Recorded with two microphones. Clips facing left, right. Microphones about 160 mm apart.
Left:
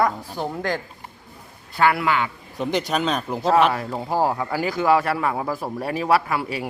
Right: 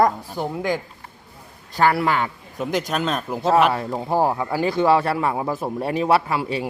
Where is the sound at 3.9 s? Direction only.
20° right (ahead or behind).